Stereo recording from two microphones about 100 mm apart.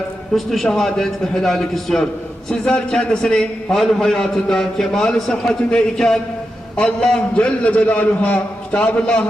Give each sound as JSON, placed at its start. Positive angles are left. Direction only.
{"t": 0.3, "sound": "a man's voice", "side_deg": 0}